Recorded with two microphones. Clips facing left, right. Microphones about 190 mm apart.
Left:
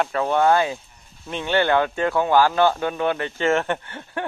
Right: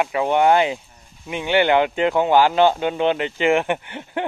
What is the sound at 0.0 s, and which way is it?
Speech, 15° right (ahead or behind).